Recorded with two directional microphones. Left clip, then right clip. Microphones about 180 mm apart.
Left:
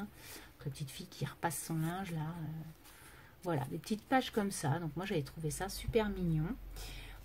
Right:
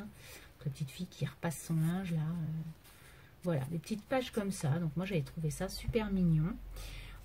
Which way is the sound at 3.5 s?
35° left (ahead or behind).